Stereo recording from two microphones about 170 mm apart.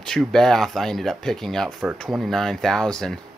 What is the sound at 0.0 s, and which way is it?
Speech, 5° left (ahead or behind).